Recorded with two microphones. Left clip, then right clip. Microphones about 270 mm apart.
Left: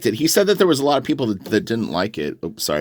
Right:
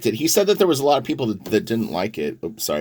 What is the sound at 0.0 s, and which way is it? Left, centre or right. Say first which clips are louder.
Speech: left 1 dB; left.